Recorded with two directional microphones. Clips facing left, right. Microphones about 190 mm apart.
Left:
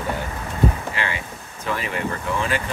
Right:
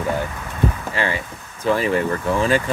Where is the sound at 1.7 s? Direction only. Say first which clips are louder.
Right 8 dB; 35° right (ahead or behind).